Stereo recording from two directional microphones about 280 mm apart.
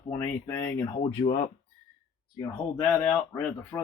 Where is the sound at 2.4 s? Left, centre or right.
Centre.